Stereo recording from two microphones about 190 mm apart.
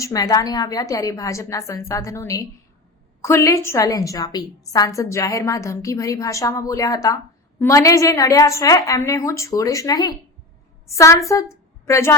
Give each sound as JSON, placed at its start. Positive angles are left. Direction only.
{"t": 0.0, "sound": "a woman's voice", "side_deg": 20}